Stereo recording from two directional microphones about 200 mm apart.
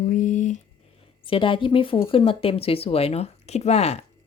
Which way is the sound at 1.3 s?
25° left (ahead or behind).